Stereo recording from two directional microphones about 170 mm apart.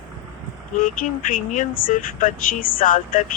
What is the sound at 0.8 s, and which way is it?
Speech, 50° left (ahead or behind).